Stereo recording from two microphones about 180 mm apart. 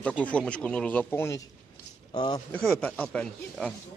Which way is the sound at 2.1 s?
25° left (ahead or behind).